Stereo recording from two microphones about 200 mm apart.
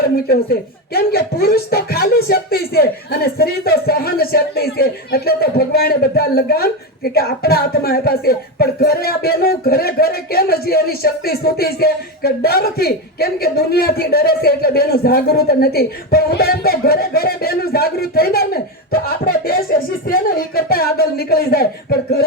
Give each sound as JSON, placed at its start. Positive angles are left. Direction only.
{"t": 0.3, "sound": "speech", "side_deg": 50}